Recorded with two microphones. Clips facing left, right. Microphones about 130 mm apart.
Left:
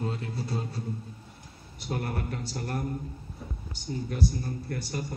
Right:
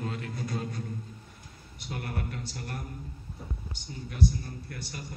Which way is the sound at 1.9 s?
40° left (ahead or behind).